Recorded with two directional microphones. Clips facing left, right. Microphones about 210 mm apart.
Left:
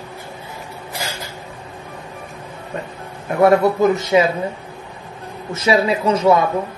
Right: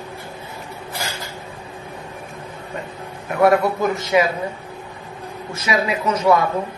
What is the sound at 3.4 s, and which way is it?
Speech, 25° left (ahead or behind).